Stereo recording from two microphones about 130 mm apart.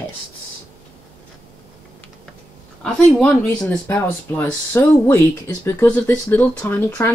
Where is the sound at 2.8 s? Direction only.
10° left (ahead or behind).